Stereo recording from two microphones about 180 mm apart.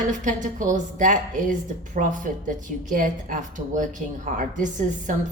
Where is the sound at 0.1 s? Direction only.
45° right (ahead or behind).